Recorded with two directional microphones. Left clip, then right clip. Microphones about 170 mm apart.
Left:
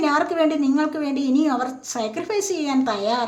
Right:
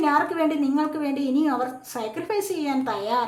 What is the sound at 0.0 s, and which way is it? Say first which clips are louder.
A woman's voice: left 2 dB; 20° left (ahead or behind).